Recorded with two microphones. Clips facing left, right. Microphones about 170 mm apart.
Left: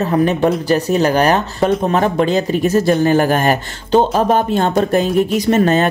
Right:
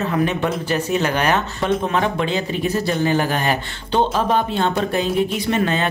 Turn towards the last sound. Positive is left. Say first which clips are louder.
# left 7 dB
turn(degrees=45)  # may be behind; listen again after turning